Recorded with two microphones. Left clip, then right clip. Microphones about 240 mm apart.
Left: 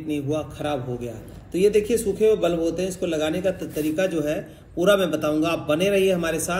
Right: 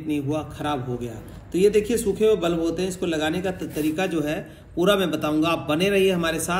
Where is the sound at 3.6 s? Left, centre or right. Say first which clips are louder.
Even; left.